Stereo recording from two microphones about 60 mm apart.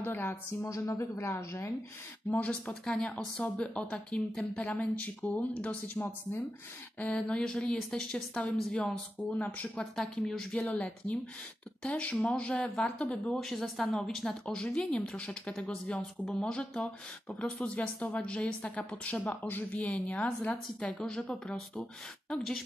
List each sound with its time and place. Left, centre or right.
0.0 s speech: left
0.6 s speech: left
2.3 s speech: left
9.9 s speech: centre
10.6 s speech: left
13.4 s speech: centre
22.3 s speech: centre